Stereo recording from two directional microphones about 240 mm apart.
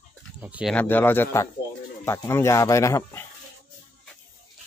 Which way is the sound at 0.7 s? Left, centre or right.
Centre.